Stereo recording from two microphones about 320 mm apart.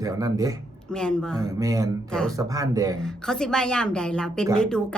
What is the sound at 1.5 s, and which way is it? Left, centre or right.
A man's voice, centre.